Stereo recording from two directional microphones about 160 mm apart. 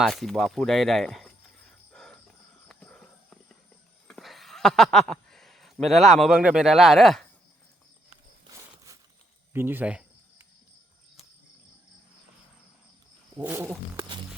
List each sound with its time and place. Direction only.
0.0 s speech: centre (ahead or behind)
1.9 s a sound: 5° left (ahead or behind)
2.6 s horse: 5° left (ahead or behind)
4.1 s speech: centre (ahead or behind)
8.9 s a sound: 20° right (ahead or behind)
9.5 s cricket: 15° right (ahead or behind)
13.3 s roaring cats: 15° right (ahead or behind)